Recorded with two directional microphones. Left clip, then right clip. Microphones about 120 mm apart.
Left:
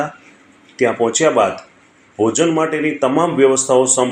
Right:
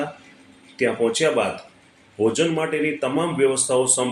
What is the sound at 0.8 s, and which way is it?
Speech, 25° left (ahead or behind).